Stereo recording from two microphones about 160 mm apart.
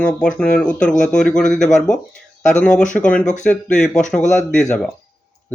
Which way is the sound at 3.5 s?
5° left (ahead or behind).